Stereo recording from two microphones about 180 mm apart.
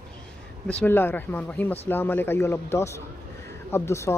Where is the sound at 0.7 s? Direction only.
10° left (ahead or behind).